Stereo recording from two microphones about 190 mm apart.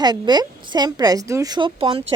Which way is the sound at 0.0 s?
20° right (ahead or behind).